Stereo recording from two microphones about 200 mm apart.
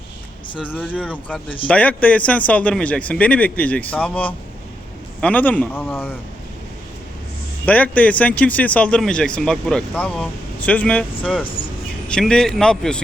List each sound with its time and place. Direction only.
0.4 s vehicle: 25° left (ahead or behind)
1.0 s speech: 5° left (ahead or behind)
7.6 s speech: 5° left (ahead or behind)
11.2 s a man's voice: 5° right (ahead or behind)